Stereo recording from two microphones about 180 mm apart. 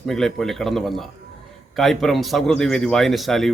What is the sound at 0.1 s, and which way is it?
Speech, centre (ahead or behind).